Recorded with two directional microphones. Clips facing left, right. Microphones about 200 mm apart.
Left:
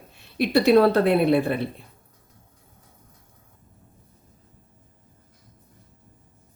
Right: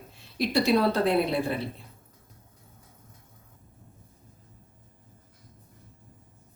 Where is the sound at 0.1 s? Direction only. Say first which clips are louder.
Left 6 dB; 60° left (ahead or behind).